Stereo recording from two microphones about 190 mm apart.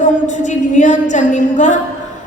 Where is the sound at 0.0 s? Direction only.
40° left (ahead or behind).